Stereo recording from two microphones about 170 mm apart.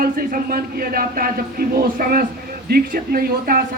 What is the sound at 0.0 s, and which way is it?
Speech, 60° right (ahead or behind).